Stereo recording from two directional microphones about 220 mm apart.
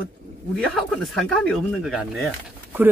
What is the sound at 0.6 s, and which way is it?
Speech, centre (ahead or behind).